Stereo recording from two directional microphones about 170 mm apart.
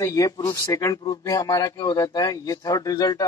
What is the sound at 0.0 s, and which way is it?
Speech, 20° left (ahead or behind).